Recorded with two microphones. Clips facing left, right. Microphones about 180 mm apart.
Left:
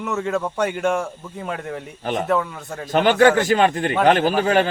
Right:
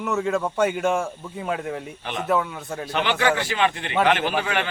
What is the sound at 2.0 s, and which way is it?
Speech, 40° left (ahead or behind).